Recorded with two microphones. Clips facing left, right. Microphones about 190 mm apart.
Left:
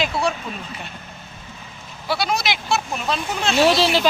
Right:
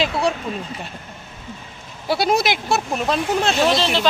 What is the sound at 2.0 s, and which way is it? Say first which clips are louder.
Speech: right 4 dB; 50° right (ahead or behind).